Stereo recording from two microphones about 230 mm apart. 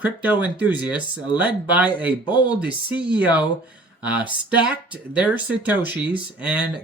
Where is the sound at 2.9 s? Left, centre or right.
Centre.